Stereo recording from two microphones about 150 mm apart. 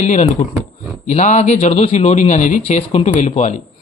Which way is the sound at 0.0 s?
50° left (ahead or behind).